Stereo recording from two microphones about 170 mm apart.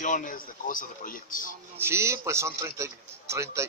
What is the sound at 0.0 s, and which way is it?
A man's voice, 50° left (ahead or behind).